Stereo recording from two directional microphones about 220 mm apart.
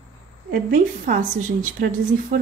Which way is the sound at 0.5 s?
40° right (ahead or behind).